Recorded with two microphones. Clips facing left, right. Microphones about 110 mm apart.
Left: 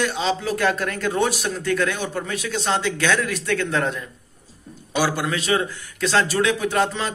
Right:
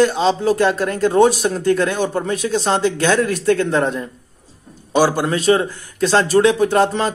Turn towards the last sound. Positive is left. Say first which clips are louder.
# right 6 dB
turn(degrees=-40)  # may be behind; listen again after turning